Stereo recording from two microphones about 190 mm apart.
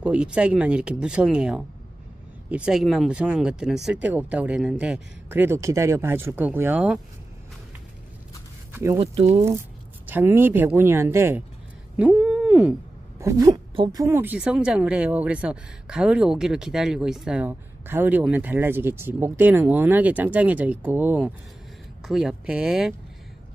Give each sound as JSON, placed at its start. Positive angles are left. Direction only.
{"t": 0.0, "sound": "speech", "side_deg": -5}
{"t": 8.7, "sound": "speech", "side_deg": -15}
{"t": 10.0, "sound": "speech", "side_deg": -10}
{"t": 12.0, "sound": "a sound", "side_deg": -5}
{"t": 13.2, "sound": "speech", "side_deg": -15}